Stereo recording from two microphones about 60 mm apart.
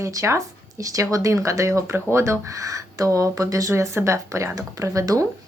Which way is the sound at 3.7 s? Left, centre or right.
Right.